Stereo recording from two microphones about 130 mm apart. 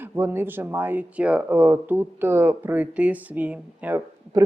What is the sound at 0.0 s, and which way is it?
Speech, 15° right (ahead or behind).